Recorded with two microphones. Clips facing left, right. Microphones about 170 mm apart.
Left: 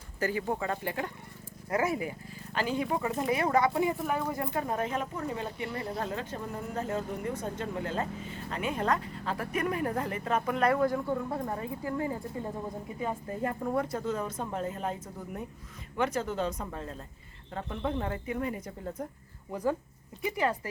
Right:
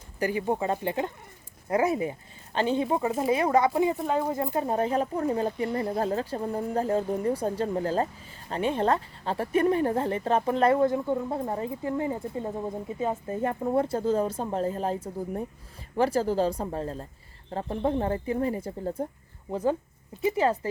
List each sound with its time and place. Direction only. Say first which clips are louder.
0.2 s a woman's voice: right 4 dB; 20° right (ahead or behind)